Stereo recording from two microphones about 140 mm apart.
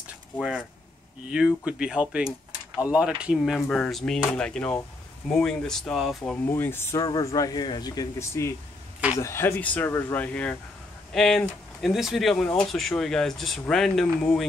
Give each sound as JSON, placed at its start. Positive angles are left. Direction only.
{"t": 0.4, "sound": "speech", "side_deg": -5}
{"t": 6.4, "sound": "speech", "side_deg": 15}
{"t": 7.1, "sound": "speech", "side_deg": 30}